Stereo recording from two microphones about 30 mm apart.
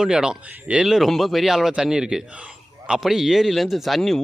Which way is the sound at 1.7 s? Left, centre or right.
Right.